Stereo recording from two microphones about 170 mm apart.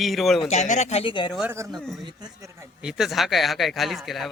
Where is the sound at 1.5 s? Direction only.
15° right (ahead or behind).